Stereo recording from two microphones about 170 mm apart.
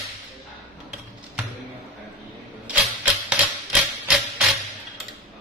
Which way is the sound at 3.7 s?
5° right (ahead or behind).